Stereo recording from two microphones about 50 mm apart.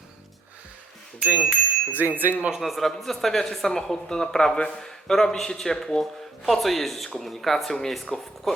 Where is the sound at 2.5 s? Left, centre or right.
Centre.